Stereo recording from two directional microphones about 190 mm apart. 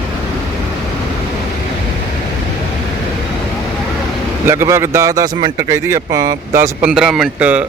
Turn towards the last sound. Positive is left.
turn(degrees=-5)  # may be behind; listen again after turning